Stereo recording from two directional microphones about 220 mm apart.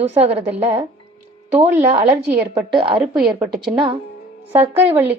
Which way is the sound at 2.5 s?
20° right (ahead or behind).